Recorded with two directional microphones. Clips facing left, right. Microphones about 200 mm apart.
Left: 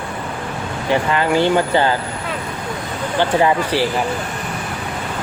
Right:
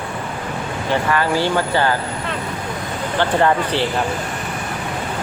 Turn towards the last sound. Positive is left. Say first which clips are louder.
# left 1 dB
turn(degrees=10)  # may be behind; listen again after turning